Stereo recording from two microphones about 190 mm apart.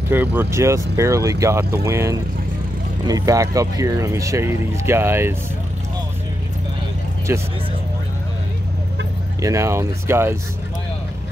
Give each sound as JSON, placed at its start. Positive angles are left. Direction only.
{"t": 0.1, "sound": "speech", "side_deg": -10}
{"t": 7.3, "sound": "speech", "side_deg": -10}
{"t": 9.4, "sound": "speech", "side_deg": -15}